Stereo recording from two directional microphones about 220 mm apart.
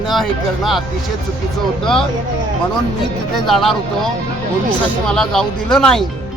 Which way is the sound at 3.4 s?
Centre (ahead or behind).